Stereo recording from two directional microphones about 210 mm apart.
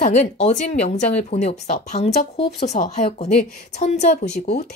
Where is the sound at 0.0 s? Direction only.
35° left (ahead or behind).